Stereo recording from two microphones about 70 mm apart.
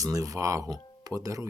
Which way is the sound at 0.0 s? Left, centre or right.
Right.